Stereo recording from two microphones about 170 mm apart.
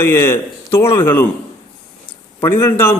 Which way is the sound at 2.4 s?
15° left (ahead or behind).